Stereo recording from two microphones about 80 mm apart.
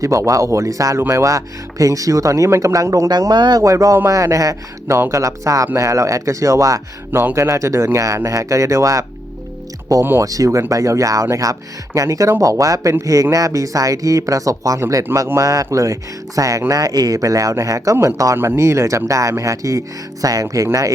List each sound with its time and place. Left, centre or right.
0.0 s speech: right
3.1 s speech: right
3.6 s speech: right
10.2 s speech: right